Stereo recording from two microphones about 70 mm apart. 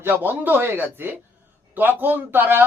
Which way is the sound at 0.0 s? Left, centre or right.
Right.